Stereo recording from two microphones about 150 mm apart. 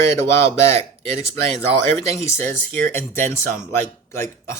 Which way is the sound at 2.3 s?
15° left (ahead or behind).